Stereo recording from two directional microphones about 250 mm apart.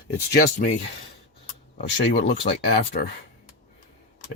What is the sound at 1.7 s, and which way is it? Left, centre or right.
Speech, left.